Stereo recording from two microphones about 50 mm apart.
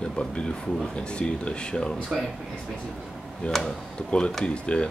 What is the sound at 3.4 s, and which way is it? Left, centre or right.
Speech, left.